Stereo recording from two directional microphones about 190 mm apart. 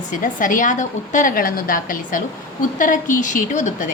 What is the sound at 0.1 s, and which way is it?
A woman's voice, 45° left (ahead or behind).